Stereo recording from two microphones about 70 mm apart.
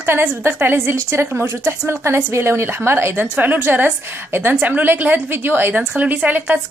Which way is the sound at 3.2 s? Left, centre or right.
Right.